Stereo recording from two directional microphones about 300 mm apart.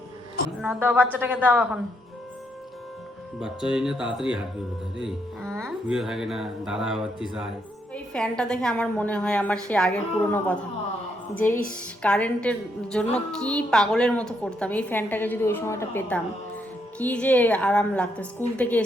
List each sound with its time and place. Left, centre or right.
0.6 s a woman's voice: centre
3.4 s a woman's voice: centre